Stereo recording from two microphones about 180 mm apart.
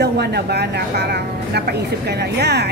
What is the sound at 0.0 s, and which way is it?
Speech, 65° right (ahead or behind).